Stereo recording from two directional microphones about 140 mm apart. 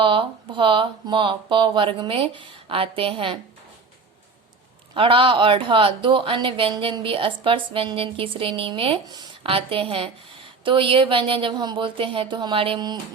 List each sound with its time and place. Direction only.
0.0 s a woman's voice: 35° right (ahead or behind)
4.9 s a woman's voice: 40° right (ahead or behind)